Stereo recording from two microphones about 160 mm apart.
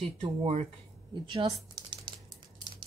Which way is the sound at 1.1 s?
30° right (ahead or behind).